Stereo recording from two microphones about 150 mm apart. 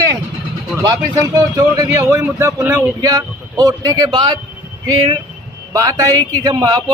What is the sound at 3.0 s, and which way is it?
Speech, 25° right (ahead or behind).